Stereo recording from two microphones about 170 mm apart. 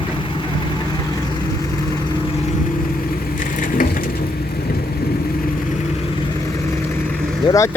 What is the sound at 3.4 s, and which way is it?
Crushing, 55° left (ahead or behind).